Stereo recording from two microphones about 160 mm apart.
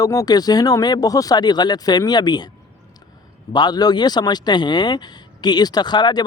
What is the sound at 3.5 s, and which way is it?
Speech, 25° left (ahead or behind).